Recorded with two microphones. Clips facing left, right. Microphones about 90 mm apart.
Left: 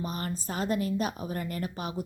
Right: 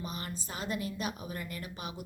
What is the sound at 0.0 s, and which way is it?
A woman's voice, 45° left (ahead or behind).